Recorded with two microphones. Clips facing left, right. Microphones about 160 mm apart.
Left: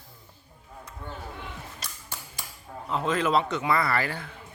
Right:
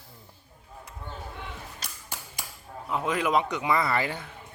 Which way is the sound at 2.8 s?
10° right (ahead or behind).